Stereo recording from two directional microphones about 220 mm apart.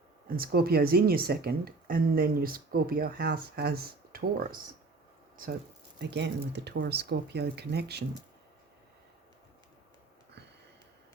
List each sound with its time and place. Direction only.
0.3 s speech: 45° right (ahead or behind)
6.0 s speech: 50° right (ahead or behind)